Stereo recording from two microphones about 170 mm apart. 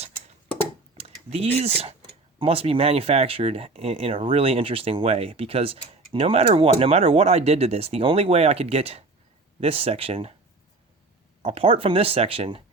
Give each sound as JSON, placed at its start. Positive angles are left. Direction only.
{"t": 0.9, "sound": "speech", "side_deg": -35}
{"t": 11.4, "sound": "speech", "side_deg": -35}